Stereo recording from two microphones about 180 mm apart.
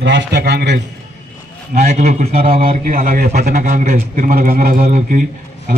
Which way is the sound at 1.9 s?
40° right (ahead or behind).